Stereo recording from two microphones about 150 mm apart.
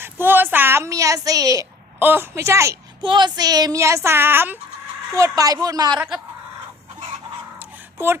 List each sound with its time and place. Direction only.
0.0 s speech: 15° right (ahead or behind)
3.0 s speech: 35° right (ahead or behind)
6.0 s speech: 5° right (ahead or behind)
7.9 s speech: 15° right (ahead or behind)